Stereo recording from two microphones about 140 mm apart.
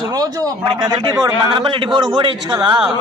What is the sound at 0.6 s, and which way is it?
A man's voice, 30° right (ahead or behind).